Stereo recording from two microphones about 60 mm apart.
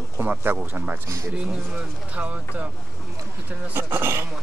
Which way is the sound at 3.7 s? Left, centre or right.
Right.